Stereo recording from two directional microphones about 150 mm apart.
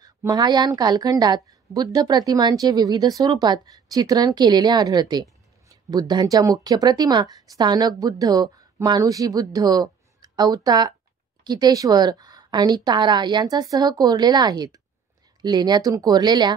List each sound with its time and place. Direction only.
0.0 s a woman's voice: 25° right (ahead or behind)